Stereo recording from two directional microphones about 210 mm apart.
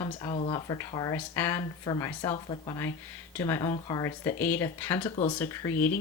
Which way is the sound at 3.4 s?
15° left (ahead or behind).